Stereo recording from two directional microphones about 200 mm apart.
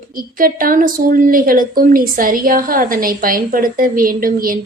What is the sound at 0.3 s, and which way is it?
A woman's voice, 45° right (ahead or behind).